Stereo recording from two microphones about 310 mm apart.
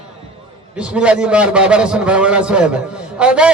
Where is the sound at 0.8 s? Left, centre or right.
Centre.